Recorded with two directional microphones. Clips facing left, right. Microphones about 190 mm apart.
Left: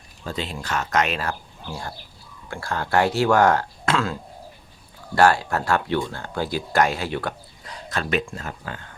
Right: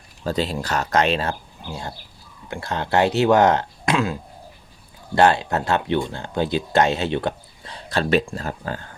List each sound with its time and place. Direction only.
0.3 s speech: 35° right (ahead or behind)